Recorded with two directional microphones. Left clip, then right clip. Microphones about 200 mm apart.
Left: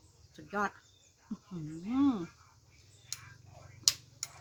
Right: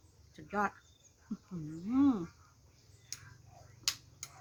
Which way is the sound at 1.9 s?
10° right (ahead or behind).